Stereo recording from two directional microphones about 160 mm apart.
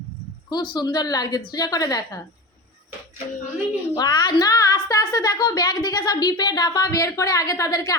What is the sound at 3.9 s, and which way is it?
A woman's voice, 25° left (ahead or behind).